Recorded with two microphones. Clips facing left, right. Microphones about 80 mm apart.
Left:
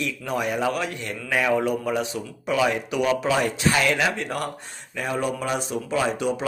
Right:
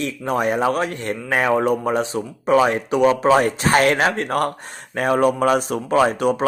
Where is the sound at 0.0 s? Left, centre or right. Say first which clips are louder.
Right 5 dB; right.